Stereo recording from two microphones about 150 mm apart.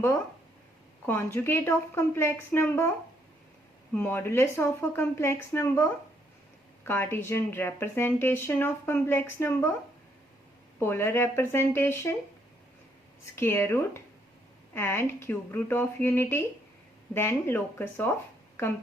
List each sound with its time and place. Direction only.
1.0 s speech: 15° left (ahead or behind)
3.9 s speech: 15° left (ahead or behind)
6.8 s speech: 15° left (ahead or behind)
10.8 s speech: 15° left (ahead or behind)
13.3 s speech: 15° left (ahead or behind)